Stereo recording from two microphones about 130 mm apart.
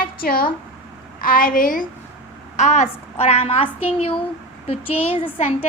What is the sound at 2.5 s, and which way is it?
A woman's voice, 65° left (ahead or behind).